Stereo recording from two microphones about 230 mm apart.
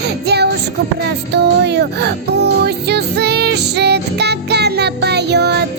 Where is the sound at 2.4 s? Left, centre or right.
Right.